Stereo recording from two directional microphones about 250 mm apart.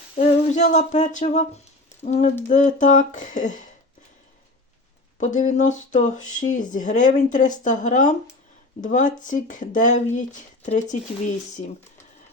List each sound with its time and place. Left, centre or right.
0.2 s speech: left
5.1 s speech: left